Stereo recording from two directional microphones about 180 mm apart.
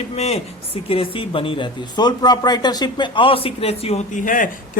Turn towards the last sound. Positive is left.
turn(degrees=50)  # may be behind; listen again after turning